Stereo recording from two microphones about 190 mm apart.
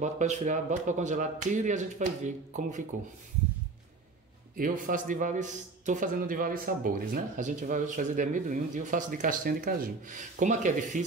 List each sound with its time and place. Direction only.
0.0 s speech: 40° right (ahead or behind)
4.6 s a man's voice: 45° right (ahead or behind)